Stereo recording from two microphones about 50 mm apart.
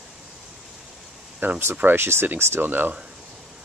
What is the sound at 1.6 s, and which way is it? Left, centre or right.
Speech, right.